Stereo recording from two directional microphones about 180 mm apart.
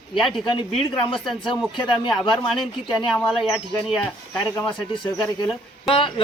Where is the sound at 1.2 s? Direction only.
Centre (ahead or behind).